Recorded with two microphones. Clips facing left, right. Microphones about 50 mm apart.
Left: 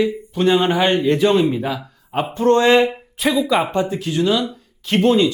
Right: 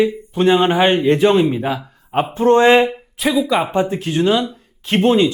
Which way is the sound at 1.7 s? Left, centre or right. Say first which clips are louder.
Right 3 dB; centre.